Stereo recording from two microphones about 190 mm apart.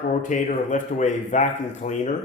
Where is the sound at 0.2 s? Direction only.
40° left (ahead or behind).